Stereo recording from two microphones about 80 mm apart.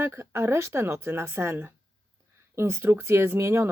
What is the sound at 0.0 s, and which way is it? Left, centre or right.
Speech, right.